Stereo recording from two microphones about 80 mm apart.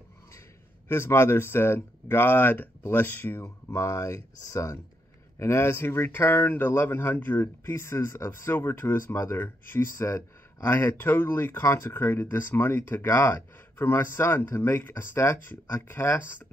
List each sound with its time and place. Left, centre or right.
0.8 s speech: left
3.4 s speech: left